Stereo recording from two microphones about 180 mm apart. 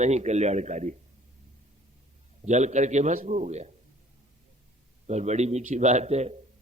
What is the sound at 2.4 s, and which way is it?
A man's voice, 40° right (ahead or behind).